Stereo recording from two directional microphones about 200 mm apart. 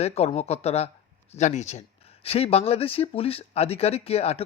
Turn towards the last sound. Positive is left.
turn(degrees=30)  # may be behind; listen again after turning